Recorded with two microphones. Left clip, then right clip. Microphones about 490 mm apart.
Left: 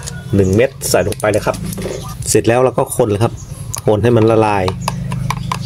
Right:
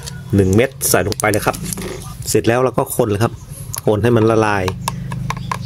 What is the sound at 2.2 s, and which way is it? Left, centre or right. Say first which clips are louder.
Speech: left 3 dB; right.